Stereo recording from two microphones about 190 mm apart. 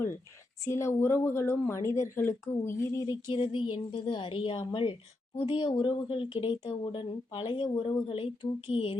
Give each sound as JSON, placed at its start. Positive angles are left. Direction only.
{"t": 0.6, "sound": "speech", "side_deg": 15}